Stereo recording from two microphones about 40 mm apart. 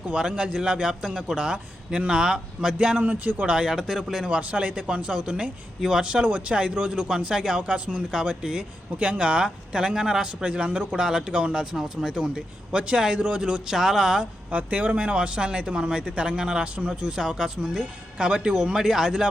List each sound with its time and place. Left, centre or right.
0.1 s a man's voice: right
3.0 s speech: right
3.4 s a man's voice: right
3.8 s speech: centre
4.3 s a man's voice: right
11.6 s a man's voice: centre
13.7 s speech: centre
14.5 s a man's voice: right; by 19.3 s centre